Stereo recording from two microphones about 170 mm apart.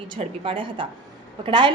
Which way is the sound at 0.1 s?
30° right (ahead or behind).